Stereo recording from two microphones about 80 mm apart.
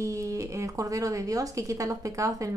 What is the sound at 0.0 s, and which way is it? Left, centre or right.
A woman's voice, right.